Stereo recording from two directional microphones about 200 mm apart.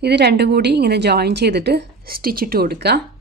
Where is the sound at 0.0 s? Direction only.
55° right (ahead or behind).